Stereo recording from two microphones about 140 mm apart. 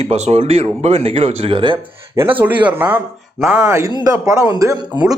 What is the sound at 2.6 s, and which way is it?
Speech, 10° right (ahead or behind).